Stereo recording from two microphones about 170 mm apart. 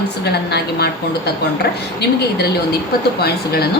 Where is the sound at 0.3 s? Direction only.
75° left (ahead or behind).